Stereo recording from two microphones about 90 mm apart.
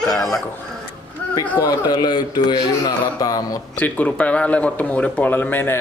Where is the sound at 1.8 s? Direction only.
55° left (ahead or behind).